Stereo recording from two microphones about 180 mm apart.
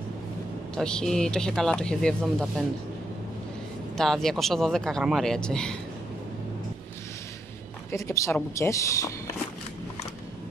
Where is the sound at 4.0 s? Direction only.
Centre (ahead or behind).